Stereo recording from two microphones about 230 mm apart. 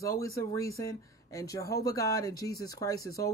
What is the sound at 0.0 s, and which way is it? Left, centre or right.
Speech, centre.